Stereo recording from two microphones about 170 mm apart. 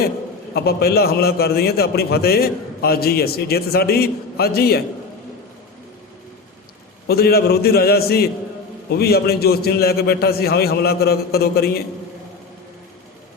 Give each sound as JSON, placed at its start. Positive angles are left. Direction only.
{"t": 0.5, "sound": "a man's voice", "side_deg": 70}
{"t": 7.1, "sound": "a man's voice", "side_deg": 65}